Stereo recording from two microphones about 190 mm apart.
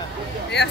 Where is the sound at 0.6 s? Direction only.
60° left (ahead or behind).